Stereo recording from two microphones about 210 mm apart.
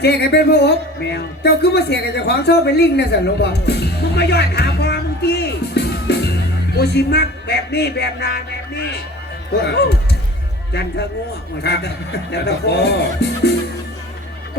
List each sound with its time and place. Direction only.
0.0 s speech: 50° left (ahead or behind)